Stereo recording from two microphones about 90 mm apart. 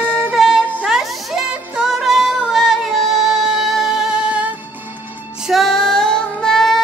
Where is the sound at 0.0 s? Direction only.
10° left (ahead or behind).